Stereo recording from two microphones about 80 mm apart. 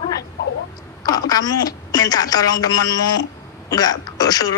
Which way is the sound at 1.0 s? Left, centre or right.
Left.